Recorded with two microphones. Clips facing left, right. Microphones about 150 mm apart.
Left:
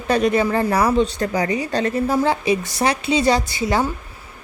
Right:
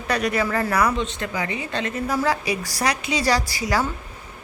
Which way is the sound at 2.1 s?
25° left (ahead or behind).